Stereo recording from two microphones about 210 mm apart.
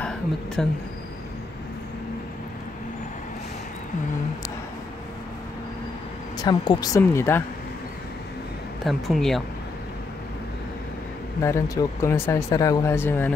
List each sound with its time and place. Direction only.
0.0 s a sound: centre (ahead or behind)
6.3 s speech: 20° left (ahead or behind)
8.8 s speech: centre (ahead or behind)
11.4 s speech: 15° left (ahead or behind)